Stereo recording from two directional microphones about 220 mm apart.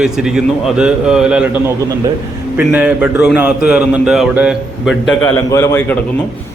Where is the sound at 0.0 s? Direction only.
Centre (ahead or behind).